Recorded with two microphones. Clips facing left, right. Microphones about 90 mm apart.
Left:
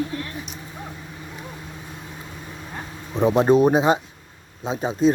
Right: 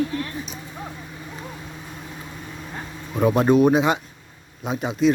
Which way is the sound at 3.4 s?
30° left (ahead or behind).